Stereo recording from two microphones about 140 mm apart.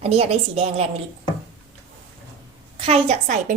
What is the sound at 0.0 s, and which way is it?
Speech, 45° right (ahead or behind).